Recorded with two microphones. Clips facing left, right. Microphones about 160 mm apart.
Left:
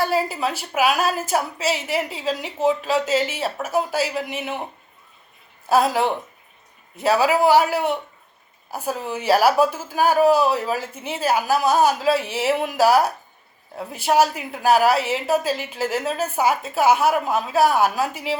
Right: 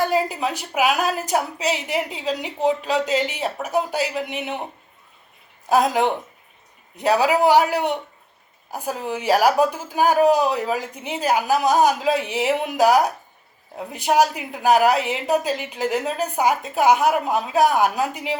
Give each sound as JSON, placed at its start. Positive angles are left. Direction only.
{"t": 0.0, "sound": "speech", "side_deg": -15}
{"t": 4.4, "sound": "a man's voice", "side_deg": 0}
{"t": 5.6, "sound": "speech", "side_deg": -15}